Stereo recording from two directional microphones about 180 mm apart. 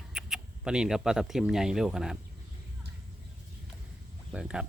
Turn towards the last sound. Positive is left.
turn(degrees=-5)  # may be behind; listen again after turning